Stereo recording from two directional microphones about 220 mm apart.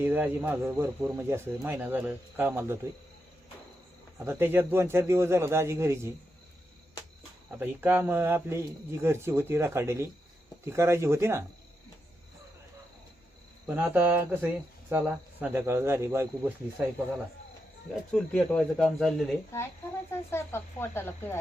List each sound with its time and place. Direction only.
0.0 s speech: 10° right (ahead or behind)
4.3 s speech: 10° right (ahead or behind)
7.6 s speech: 10° right (ahead or behind)
13.7 s speech: 10° right (ahead or behind)
18.1 s speech: centre (ahead or behind)